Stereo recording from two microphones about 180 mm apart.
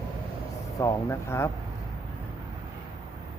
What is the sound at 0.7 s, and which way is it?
Speech, 20° left (ahead or behind).